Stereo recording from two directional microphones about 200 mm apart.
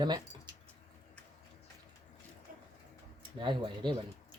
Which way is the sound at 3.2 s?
25° right (ahead or behind).